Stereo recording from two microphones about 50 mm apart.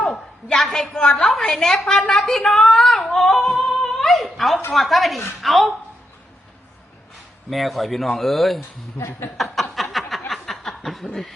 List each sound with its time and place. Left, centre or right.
0.0 s a sound: centre
0.9 s a woman's voice: centre
3.4 s a woman's voice: centre
3.7 s speech: centre
7.5 s speech: centre
9.0 s speech: left
9.7 s a sound: centre
11.0 s a woman's voice: centre